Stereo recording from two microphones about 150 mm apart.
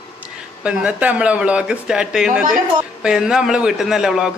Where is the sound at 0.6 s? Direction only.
5° right (ahead or behind).